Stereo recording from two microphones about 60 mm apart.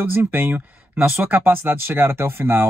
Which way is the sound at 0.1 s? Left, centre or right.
Right.